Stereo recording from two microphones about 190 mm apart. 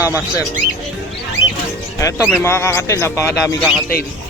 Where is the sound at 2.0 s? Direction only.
10° left (ahead or behind).